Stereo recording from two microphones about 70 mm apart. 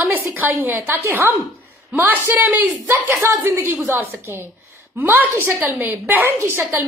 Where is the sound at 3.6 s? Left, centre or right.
Right.